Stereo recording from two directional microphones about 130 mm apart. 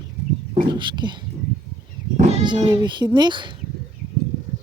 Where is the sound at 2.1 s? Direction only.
60° right (ahead or behind).